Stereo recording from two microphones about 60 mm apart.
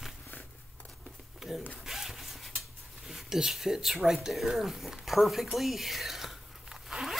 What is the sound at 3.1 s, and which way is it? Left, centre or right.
Speech, centre.